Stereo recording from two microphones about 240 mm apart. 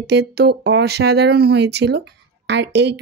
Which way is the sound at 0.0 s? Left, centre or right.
Right.